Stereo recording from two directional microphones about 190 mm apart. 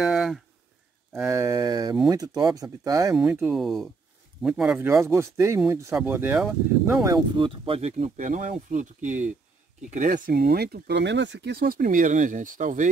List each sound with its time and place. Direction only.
0.0 s a sound: 5° right (ahead or behind)
1.1 s speech: 10° right (ahead or behind)
3.3 s speech: 5° right (ahead or behind); by 12.9 s 40° right (ahead or behind)